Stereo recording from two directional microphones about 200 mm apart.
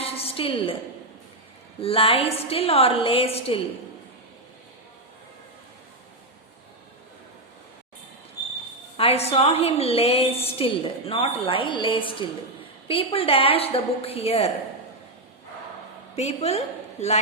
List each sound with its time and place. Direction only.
0.0 s a sound: 30° left (ahead or behind)
1.8 s a woman's voice: 30° left (ahead or behind)
9.0 s a woman's voice: 30° left (ahead or behind)
16.1 s a woman's voice: 35° left (ahead or behind)